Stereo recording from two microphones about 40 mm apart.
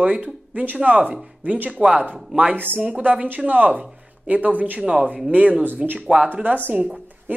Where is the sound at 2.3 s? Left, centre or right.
Right.